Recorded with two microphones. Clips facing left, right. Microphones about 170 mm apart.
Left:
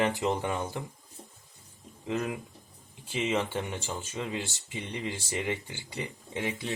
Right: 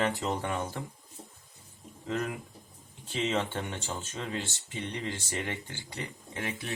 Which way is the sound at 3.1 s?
10° left (ahead or behind).